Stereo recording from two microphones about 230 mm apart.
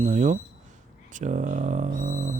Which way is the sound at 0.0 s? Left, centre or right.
Right.